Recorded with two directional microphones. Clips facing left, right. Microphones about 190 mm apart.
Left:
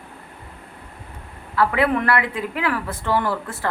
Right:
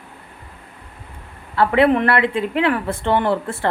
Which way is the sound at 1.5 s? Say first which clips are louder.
Right 4 dB; 25° right (ahead or behind).